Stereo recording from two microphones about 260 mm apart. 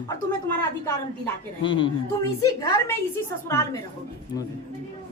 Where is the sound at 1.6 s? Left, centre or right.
Centre.